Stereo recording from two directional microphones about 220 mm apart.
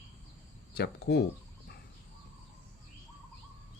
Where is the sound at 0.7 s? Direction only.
50° left (ahead or behind).